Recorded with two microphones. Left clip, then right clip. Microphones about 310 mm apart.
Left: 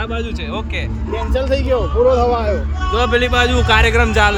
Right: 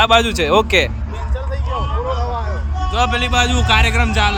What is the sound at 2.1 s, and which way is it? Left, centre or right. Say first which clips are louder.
Speech: left 9 dB; left.